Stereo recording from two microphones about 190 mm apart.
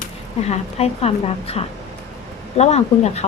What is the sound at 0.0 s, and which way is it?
Speech, 35° left (ahead or behind).